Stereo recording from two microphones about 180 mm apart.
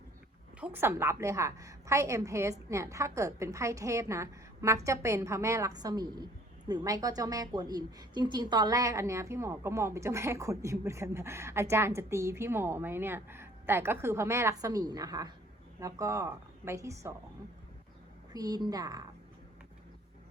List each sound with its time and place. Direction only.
0.6 s a woman's voice: 10° right (ahead or behind)
18.3 s a woman's voice: 20° right (ahead or behind)